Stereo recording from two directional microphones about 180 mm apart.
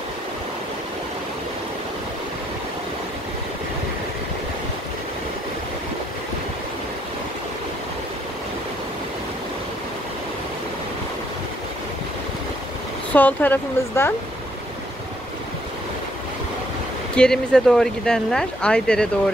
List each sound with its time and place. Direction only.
13.1 s speech: 10° left (ahead or behind)
17.1 s speech: 5° left (ahead or behind)